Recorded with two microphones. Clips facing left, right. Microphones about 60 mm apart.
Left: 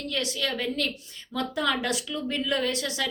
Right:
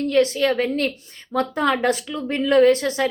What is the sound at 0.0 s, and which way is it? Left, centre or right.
A woman's voice, right.